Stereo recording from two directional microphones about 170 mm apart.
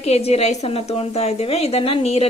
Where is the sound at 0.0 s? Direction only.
35° left (ahead or behind).